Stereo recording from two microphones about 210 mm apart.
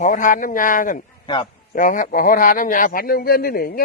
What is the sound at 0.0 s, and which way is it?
A man's voice, 40° left (ahead or behind).